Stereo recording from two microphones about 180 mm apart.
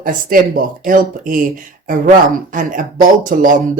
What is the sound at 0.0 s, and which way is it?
Speech, 50° right (ahead or behind).